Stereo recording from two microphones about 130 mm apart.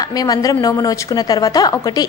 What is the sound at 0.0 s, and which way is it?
A woman's voice, 30° left (ahead or behind).